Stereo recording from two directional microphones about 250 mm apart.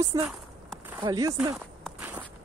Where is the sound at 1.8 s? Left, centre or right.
Centre.